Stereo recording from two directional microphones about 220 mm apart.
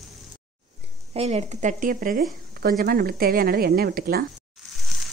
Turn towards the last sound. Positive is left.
turn(degrees=-45)  # may be behind; listen again after turning